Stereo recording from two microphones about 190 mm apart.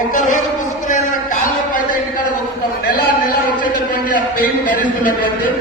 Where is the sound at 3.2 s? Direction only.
50° left (ahead or behind).